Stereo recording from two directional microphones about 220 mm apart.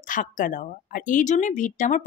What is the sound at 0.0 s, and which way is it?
A woman's voice, 35° left (ahead or behind).